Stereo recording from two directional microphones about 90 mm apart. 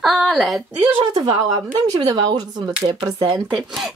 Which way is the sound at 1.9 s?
45° right (ahead or behind).